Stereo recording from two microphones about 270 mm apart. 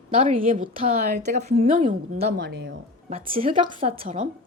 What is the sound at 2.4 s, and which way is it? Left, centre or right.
Speech, right.